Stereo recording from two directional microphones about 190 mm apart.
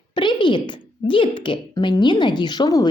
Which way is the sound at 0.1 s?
25° left (ahead or behind).